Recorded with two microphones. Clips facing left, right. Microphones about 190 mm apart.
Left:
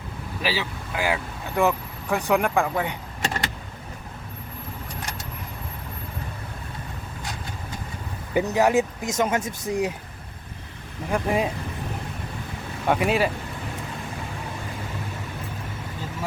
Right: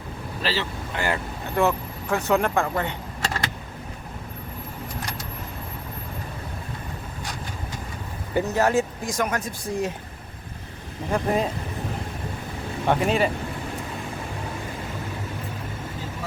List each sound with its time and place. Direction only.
0.4 s speech: 10° left (ahead or behind)
8.3 s speech: 15° left (ahead or behind)
11.1 s speech: 10° left (ahead or behind)
12.9 s speech: 5° left (ahead or behind)